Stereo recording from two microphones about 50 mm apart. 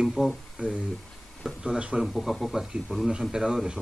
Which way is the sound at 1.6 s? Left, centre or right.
Centre.